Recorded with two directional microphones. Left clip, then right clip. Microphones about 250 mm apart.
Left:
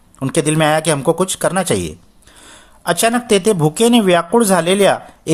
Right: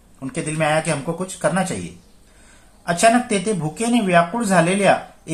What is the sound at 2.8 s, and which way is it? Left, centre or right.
Speech, left.